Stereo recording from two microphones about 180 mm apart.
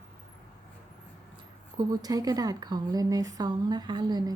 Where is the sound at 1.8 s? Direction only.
20° right (ahead or behind).